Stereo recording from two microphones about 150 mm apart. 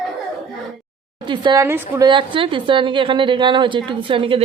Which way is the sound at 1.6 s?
15° right (ahead or behind).